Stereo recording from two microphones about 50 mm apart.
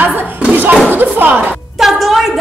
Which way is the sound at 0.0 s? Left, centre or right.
Right.